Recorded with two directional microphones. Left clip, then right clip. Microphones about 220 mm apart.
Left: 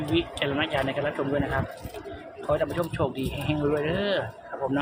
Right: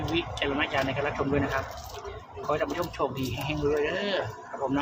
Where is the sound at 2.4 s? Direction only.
10° left (ahead or behind).